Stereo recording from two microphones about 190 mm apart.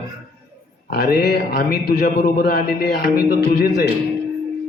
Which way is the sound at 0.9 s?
55° left (ahead or behind).